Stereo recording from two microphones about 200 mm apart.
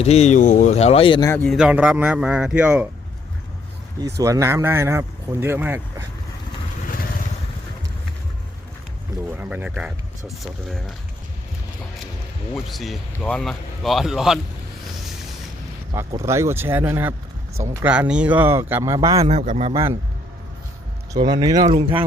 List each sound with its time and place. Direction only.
0.0 s speech: 30° left (ahead or behind)
1.5 s speech: 5° right (ahead or behind)
4.0 s speech: 15° right (ahead or behind)
9.3 s speech: 10° right (ahead or behind)
12.6 s speech: centre (ahead or behind)
16.2 s speech: 15° right (ahead or behind)
19.3 s a man's voice: 35° right (ahead or behind)
19.7 s speech: 15° right (ahead or behind)
21.1 s speech: 20° right (ahead or behind)
21.7 s speech: 30° right (ahead or behind)